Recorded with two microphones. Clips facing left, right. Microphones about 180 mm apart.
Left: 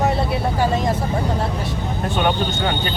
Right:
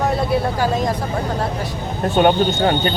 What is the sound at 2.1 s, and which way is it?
Speech, 40° right (ahead or behind).